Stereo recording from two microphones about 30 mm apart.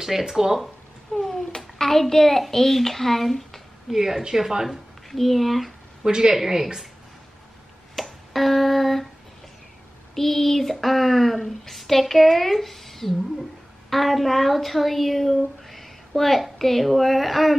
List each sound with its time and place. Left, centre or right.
0.0 s speech: centre
1.1 s babbling: centre
1.8 s a child's voice: centre
3.9 s speech: centre
4.6 s speech: centre
6.0 s speech: right
6.3 s speech: centre
7.9 s finger snapping: centre
10.1 s a woman's voice: centre